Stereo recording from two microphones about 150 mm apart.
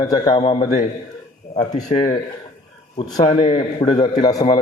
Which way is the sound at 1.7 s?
50° left (ahead or behind).